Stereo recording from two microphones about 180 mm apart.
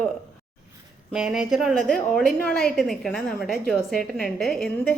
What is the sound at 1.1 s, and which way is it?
A woman's voice, 5° right (ahead or behind).